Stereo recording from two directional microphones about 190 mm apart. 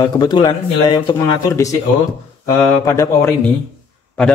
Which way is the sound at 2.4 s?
15° left (ahead or behind).